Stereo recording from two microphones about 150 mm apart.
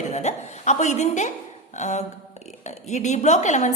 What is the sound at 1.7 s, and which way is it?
A woman's voice, 50° left (ahead or behind).